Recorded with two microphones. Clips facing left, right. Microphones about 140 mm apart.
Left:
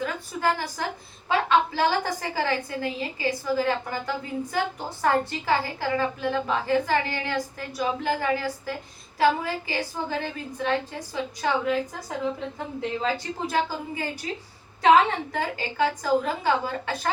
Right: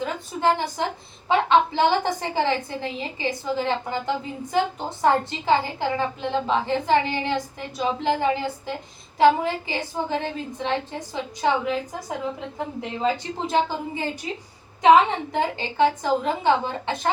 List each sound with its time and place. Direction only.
0.0 s a sound: 25° right (ahead or behind)
1.3 s a woman's voice: 20° right (ahead or behind)
13.0 s a woman's voice: 20° right (ahead or behind)